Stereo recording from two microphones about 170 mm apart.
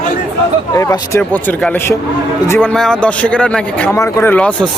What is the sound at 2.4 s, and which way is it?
Speech, 15° left (ahead or behind).